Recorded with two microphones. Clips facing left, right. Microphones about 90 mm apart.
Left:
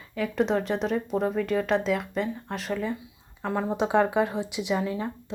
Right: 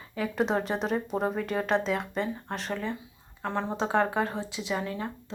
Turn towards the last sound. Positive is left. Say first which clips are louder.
# left 4 dB
turn(degrees=15)  # may be behind; listen again after turning